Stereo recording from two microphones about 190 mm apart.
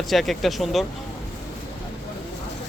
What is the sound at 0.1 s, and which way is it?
Speech, centre (ahead or behind).